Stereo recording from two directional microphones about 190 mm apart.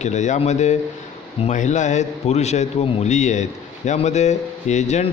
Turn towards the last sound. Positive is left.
turn(degrees=35)  # may be behind; listen again after turning